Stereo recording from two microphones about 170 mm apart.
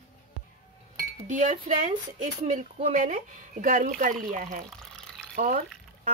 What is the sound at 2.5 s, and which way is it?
Speech, 35° right (ahead or behind).